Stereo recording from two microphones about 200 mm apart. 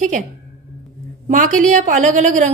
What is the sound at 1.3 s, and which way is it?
A woman's voice, 40° right (ahead or behind).